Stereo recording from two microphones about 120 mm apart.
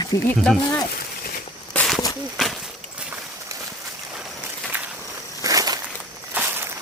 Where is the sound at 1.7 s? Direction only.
5° left (ahead or behind).